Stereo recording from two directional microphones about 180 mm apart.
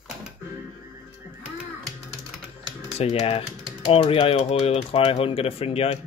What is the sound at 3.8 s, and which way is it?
Speech, 30° left (ahead or behind).